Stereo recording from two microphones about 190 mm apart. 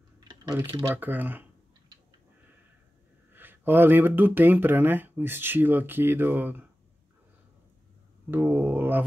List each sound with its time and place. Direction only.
0.3 s speech: 20° right (ahead or behind)
0.9 s speech: 10° right (ahead or behind)
3.3 s speech: 10° right (ahead or behind)
8.3 s speech: 10° right (ahead or behind)